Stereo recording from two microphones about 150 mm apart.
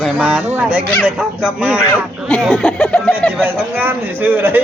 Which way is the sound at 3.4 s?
15° right (ahead or behind).